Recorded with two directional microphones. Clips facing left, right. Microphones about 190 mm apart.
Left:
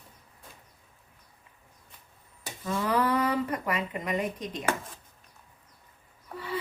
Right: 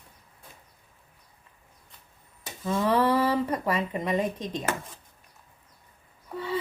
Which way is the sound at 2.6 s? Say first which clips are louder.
Right 4 dB; 25° right (ahead or behind).